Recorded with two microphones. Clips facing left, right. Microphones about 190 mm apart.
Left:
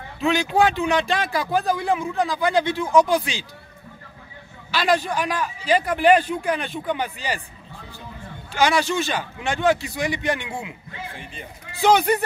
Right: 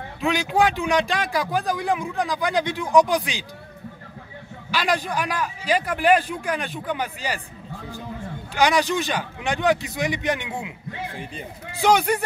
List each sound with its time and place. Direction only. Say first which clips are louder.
0.2 s a man's voice: left 2 dB; 10° right (ahead or behind)
4.6 s a man's voice: left 3 dB; 10° right (ahead or behind)
8.5 s a man's voice: even; 15° right (ahead or behind)
11.8 s a man's voice: left 2 dB; 10° right (ahead or behind)